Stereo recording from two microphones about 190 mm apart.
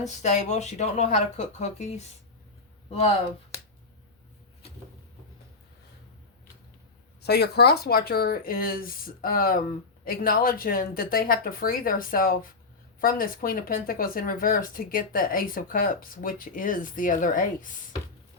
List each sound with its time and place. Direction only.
0.1 s speech: 40° left (ahead or behind)
7.2 s speech: 60° left (ahead or behind)